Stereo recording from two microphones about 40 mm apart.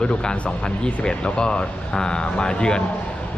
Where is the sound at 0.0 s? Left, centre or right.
Left.